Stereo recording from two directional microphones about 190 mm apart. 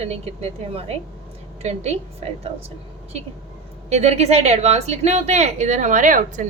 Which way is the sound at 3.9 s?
35° right (ahead or behind).